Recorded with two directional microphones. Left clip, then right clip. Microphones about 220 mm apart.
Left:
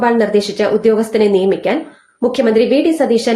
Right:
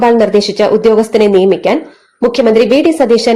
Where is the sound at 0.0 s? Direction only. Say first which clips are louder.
Right 5 dB; 30° right (ahead or behind).